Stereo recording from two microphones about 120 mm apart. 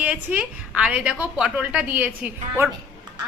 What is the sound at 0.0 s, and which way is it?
A woman's voice, 10° right (ahead or behind).